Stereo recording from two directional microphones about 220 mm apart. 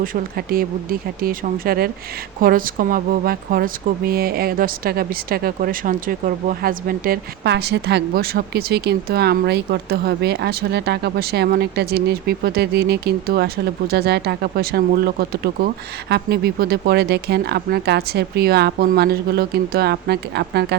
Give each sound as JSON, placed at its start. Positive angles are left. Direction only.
{"t": 0.0, "sound": "speech", "side_deg": -40}